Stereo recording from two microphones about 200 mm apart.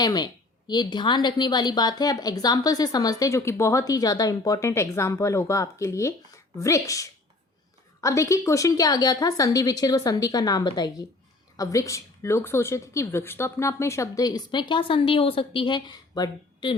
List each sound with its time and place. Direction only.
0.0 s a woman's voice: 20° left (ahead or behind)